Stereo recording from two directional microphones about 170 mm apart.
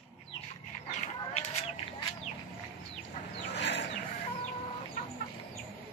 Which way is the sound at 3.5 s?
90° left.